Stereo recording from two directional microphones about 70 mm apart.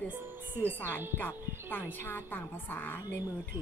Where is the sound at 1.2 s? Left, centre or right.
Left.